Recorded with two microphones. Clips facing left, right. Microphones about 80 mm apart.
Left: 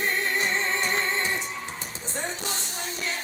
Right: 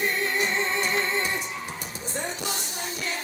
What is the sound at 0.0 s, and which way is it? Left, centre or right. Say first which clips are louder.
Music: even; left.